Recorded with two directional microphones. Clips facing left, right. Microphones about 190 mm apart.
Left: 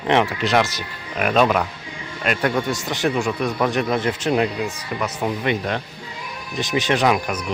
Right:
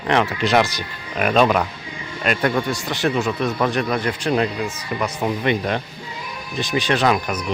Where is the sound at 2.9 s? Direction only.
15° left (ahead or behind).